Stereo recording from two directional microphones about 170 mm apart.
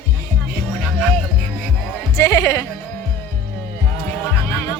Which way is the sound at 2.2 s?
15° left (ahead or behind).